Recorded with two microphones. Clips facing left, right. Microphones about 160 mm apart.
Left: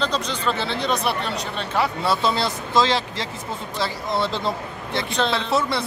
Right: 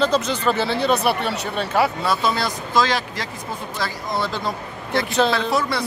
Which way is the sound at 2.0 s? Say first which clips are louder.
Even; 25° left (ahead or behind).